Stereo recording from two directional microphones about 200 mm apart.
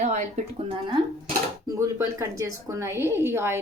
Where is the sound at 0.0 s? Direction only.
35° right (ahead or behind).